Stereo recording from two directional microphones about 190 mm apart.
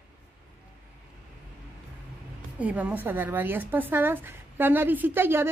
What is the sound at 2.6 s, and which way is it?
A woman's voice, 10° right (ahead or behind).